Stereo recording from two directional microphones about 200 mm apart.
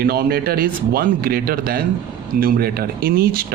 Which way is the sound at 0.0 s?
50° right (ahead or behind).